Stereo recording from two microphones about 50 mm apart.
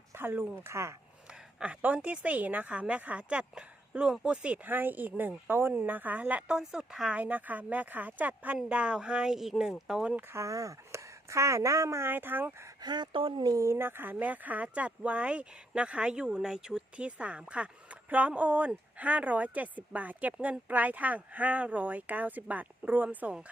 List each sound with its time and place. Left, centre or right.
0.1 s a sound: right
0.6 s speech: right
1.6 s a woman's voice: right
4.6 s speech: right
6.5 s a woman's voice: centre
7.1 s speech: right
8.7 s speech: right
9.3 s a woman's voice: centre
10.3 s a woman's voice: right
12.0 s speech: right
13.6 s speech: right; by 16.8 s centre
17.0 s speech: right